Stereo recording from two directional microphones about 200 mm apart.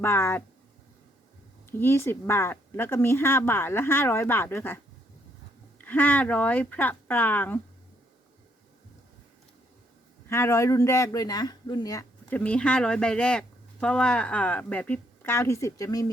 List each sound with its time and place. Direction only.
0.0 s speech: 10° left (ahead or behind)
1.8 s speech: 10° left (ahead or behind)
5.8 s speech: 10° left (ahead or behind)
10.2 s speech: 15° left (ahead or behind)
12.4 s speech: 5° left (ahead or behind)